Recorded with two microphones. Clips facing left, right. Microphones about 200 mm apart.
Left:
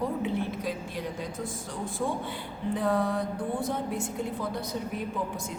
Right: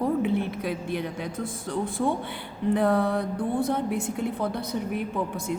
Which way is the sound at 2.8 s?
65° right (ahead or behind).